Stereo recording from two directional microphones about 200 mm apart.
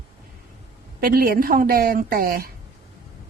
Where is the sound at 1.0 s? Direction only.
45° right (ahead or behind).